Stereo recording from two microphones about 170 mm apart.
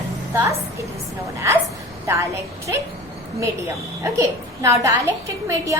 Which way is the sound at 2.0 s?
15° right (ahead or behind).